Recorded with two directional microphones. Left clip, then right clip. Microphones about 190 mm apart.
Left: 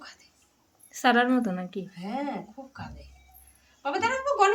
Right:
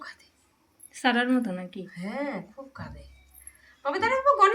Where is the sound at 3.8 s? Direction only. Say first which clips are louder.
Right 2 dB; 20° left (ahead or behind).